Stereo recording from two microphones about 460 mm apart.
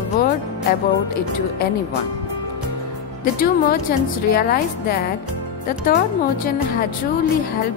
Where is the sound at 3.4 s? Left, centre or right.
Centre.